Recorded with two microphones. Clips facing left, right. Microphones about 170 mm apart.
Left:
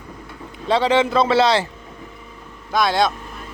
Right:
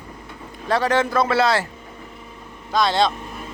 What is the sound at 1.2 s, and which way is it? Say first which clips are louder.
Speech: left 3 dB; 20° left (ahead or behind).